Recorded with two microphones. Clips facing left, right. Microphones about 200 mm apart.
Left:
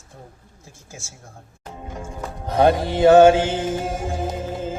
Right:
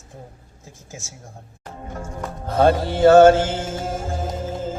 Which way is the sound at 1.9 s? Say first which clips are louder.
Right 2 dB; 15° left (ahead or behind).